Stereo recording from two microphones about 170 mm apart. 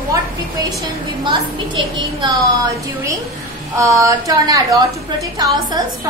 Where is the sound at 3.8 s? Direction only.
20° right (ahead or behind).